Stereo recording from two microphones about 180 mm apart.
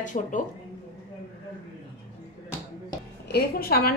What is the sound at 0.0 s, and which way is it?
Speech, 45° left (ahead or behind).